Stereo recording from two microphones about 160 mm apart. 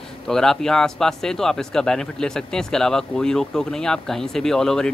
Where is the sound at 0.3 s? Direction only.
5° left (ahead or behind).